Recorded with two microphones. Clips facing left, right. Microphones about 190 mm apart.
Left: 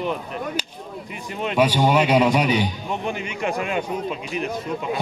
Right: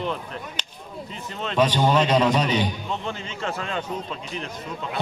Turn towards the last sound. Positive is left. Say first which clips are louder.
# left 7 dB
turn(degrees=15)  # may be behind; listen again after turning